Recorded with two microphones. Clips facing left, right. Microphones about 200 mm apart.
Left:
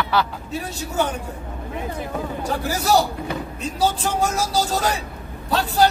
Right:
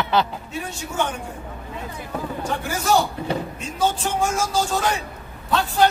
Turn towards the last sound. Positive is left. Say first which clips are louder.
# left 1 dB
turn(degrees=40)  # may be behind; listen again after turning